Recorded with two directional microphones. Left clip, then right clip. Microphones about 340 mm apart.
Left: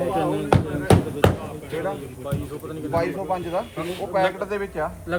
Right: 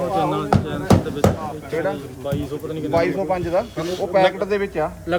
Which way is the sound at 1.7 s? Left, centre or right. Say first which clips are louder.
Right 4 dB; right.